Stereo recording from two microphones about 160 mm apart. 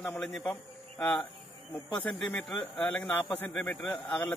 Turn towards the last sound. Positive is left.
turn(degrees=15)  # may be behind; listen again after turning